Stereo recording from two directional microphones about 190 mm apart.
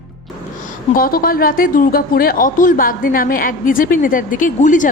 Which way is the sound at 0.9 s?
50° left (ahead or behind).